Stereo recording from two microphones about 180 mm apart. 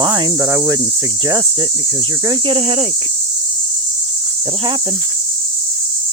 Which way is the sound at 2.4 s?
30° right (ahead or behind).